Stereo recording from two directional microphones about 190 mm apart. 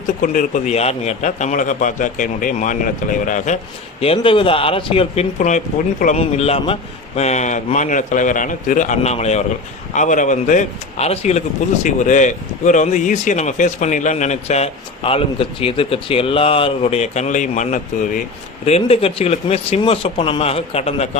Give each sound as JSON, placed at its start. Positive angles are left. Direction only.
{"t": 0.2, "sound": "a man's voice", "side_deg": 45}
{"t": 4.0, "sound": "speech", "side_deg": 30}
{"t": 5.4, "sound": "speech", "side_deg": 40}